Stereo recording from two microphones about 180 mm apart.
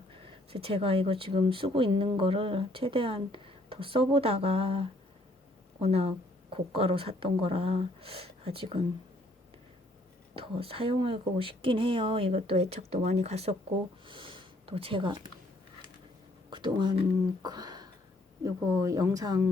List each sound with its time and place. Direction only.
0.1 s speech: 30° right (ahead or behind)
10.3 s speech: 30° right (ahead or behind)
16.5 s speech: 25° right (ahead or behind)